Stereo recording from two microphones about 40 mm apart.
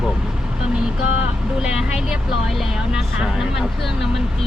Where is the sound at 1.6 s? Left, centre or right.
Right.